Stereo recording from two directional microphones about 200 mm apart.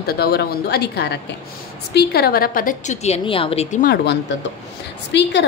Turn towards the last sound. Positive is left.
turn(degrees=60)  # may be behind; listen again after turning